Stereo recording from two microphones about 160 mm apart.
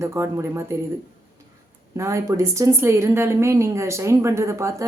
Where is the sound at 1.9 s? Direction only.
20° right (ahead or behind).